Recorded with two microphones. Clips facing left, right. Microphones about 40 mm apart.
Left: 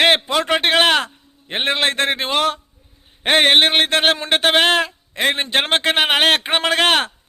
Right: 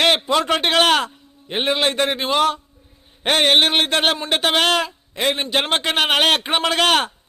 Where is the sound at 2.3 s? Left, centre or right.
Left.